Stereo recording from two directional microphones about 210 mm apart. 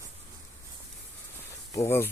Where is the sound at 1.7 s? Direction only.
15° left (ahead or behind).